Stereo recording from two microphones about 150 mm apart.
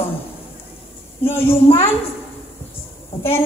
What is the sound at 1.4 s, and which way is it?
Speech, 40° left (ahead or behind).